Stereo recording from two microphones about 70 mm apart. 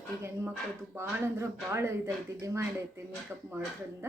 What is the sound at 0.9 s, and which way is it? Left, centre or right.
A woman's voice, right.